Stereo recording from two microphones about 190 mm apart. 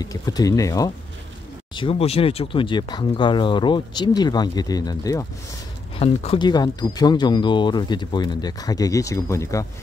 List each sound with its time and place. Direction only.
0.0 s speech: 20° left (ahead or behind)
1.8 s speech: 30° left (ahead or behind)